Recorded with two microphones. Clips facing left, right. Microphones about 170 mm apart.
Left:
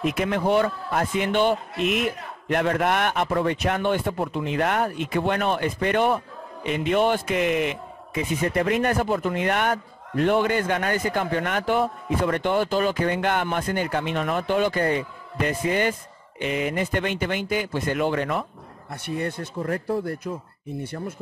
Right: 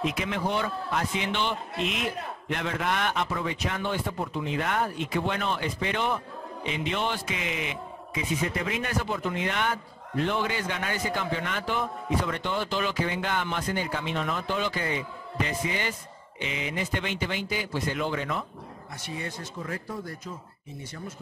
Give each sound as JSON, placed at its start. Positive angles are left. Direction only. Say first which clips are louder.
{"t": 0.0, "sound": "a man's voice", "louder": "left 6 dB", "side_deg": 55}